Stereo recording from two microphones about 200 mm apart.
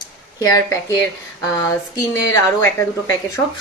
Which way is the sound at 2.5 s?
20° left (ahead or behind).